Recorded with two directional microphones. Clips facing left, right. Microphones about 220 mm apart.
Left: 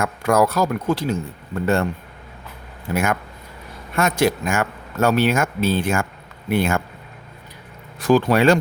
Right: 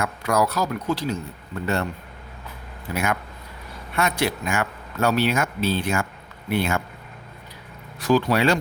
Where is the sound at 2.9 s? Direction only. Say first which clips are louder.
Left 4 dB; 50° left (ahead or behind).